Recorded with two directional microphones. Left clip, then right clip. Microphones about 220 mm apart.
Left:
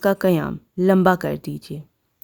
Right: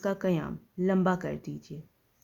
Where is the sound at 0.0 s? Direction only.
50° left (ahead or behind).